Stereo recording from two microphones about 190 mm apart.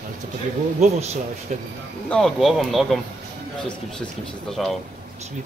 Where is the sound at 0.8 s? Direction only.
35° right (ahead or behind).